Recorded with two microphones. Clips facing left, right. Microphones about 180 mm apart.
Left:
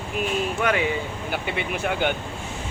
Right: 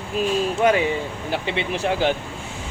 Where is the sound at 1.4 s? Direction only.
30° right (ahead or behind).